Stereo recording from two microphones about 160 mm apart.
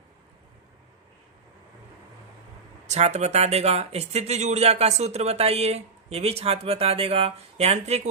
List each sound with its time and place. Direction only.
2.8 s speech: 45° right (ahead or behind)